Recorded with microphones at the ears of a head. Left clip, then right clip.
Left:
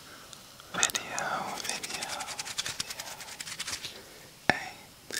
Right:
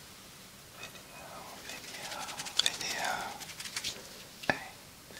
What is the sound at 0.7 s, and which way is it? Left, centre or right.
Whispering, left.